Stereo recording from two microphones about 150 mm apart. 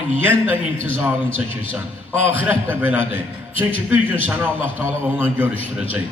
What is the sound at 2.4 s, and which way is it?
Speech, 10° right (ahead or behind).